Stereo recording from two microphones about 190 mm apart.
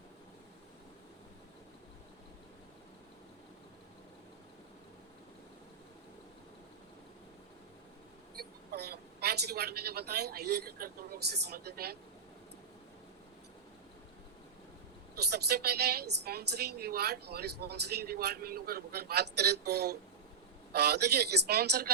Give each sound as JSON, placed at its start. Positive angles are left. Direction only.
{"t": 8.4, "sound": "a woman's voice", "side_deg": -55}
{"t": 15.3, "sound": "a woman's voice", "side_deg": -55}